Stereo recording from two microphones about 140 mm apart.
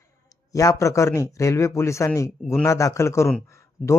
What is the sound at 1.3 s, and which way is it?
A man's voice, 20° left (ahead or behind).